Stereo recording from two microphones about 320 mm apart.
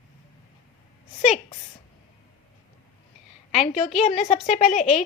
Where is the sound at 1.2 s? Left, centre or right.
Left.